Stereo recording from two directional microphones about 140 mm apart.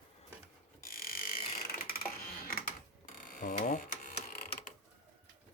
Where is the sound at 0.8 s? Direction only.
90° left.